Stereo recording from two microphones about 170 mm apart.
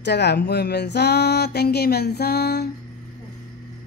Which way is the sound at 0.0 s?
85° left.